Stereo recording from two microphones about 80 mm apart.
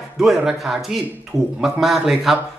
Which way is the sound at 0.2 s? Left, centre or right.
Centre.